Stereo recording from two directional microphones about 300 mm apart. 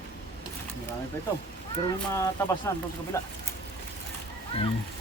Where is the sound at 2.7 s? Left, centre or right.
Centre.